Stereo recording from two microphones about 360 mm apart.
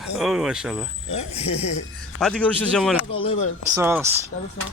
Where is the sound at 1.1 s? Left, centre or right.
Centre.